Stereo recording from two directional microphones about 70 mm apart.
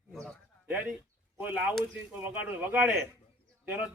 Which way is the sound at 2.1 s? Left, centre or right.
Right.